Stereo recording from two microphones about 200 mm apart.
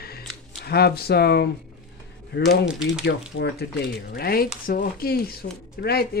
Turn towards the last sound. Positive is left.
turn(degrees=50)  # may be behind; listen again after turning